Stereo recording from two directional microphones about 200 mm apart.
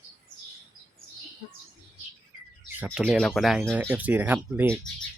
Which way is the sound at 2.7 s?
10° right (ahead or behind).